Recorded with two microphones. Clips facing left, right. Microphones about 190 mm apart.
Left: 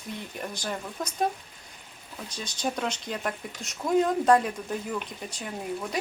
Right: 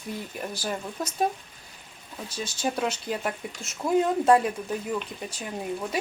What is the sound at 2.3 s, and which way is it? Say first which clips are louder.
Speech: right 2 dB; 5° right (ahead or behind).